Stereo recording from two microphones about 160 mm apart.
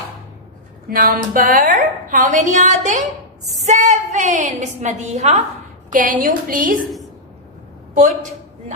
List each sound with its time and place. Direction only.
0.9 s a woman's voice: 65° right (ahead or behind); by 5.4 s 45° right (ahead or behind)
5.9 s a woman's voice: 55° right (ahead or behind)